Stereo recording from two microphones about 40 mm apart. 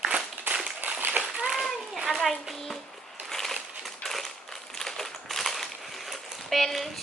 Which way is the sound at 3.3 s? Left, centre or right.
Centre.